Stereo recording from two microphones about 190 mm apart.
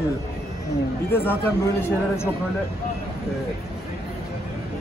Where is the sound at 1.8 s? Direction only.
15° left (ahead or behind).